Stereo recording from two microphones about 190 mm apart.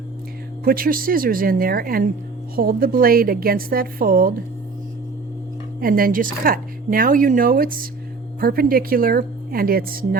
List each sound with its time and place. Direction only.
0.6 s speech: 50° right (ahead or behind)
5.8 s speech: 50° right (ahead or behind)